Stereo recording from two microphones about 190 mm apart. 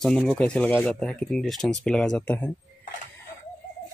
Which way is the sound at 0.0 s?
Centre (ahead or behind).